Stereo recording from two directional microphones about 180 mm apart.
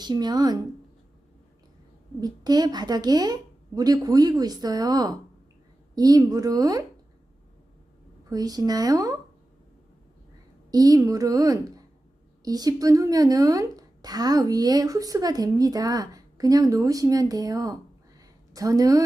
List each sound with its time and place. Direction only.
0.0 s a woman's voice: 25° right (ahead or behind)
2.2 s a woman's voice: 20° right (ahead or behind)
8.3 s a woman's voice: 20° right (ahead or behind)
10.7 s a woman's voice: 20° right (ahead or behind)
18.2 s a sound: 20° right (ahead or behind)